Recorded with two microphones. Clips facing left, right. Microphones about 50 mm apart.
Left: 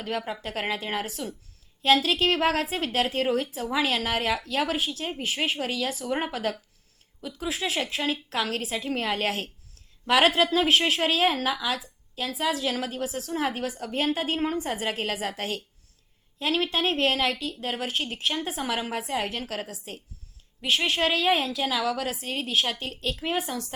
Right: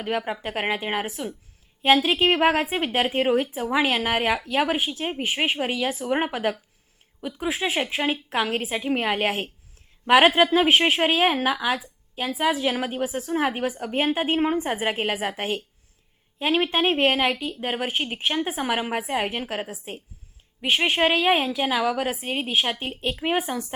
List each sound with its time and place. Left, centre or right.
0.0 s a woman's voice: right